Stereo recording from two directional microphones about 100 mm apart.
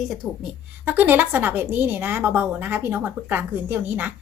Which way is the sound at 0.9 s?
20° right (ahead or behind).